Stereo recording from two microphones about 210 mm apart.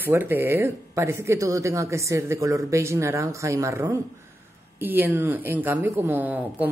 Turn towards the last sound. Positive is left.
turn(degrees=-10)  # may be behind; listen again after turning